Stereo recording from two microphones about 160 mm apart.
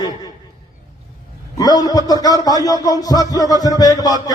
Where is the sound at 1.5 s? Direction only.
25° left (ahead or behind).